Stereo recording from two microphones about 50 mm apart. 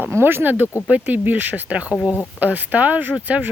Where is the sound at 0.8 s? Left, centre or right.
Right.